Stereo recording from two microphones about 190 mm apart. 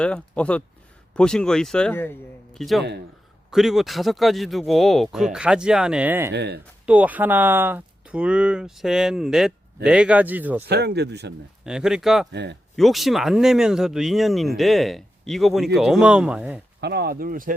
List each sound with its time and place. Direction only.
0.0 s speech: 5° left (ahead or behind)
2.6 s speech: centre (ahead or behind)
6.3 s speech: 65° right (ahead or behind)
6.8 s speech: 5° right (ahead or behind)
10.7 s speech: 60° right (ahead or behind)
11.6 s speech: 5° right (ahead or behind)
12.3 s speech: 65° right (ahead or behind)
12.7 s speech: centre (ahead or behind)
16.8 s speech: 60° right (ahead or behind)